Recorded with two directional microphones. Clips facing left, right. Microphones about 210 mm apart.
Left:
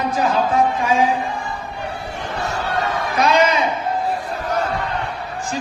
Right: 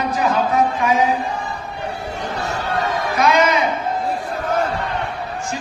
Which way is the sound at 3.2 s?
30° left (ahead or behind).